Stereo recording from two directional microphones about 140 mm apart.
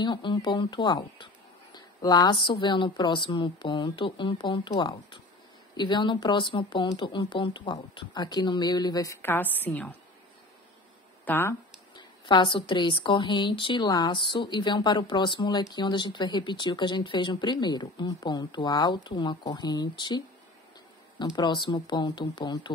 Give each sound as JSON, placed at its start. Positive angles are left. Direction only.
{"t": 0.0, "sound": "speech", "side_deg": 35}
{"t": 11.2, "sound": "speech", "side_deg": 15}
{"t": 11.9, "sound": "speech", "side_deg": 35}
{"t": 21.4, "sound": "speech", "side_deg": 35}